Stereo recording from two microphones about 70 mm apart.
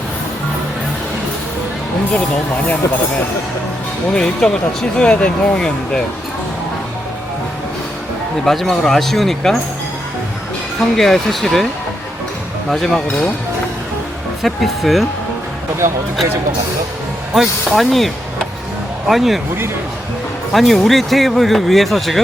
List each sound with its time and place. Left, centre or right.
2.1 s speech: centre
4.1 s speech: centre
8.4 s speech: centre
10.8 s speech: centre
12.7 s speech: centre
14.4 s speech: centre
17.3 s speech: centre
20.5 s speech: centre